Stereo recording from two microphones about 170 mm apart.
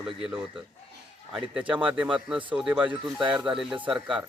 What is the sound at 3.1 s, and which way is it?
Speech, 5° right (ahead or behind).